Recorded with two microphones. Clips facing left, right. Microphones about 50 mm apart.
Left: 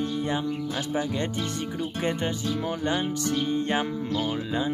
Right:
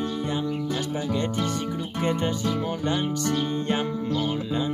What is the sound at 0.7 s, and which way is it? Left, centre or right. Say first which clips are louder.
Speech: right 1 dB; centre.